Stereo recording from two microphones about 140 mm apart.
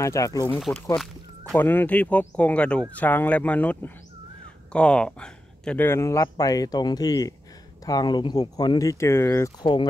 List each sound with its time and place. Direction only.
0.0 s speech: 20° left (ahead or behind)
0.7 s speech: 10° left (ahead or behind)
9.6 s speech: 35° left (ahead or behind)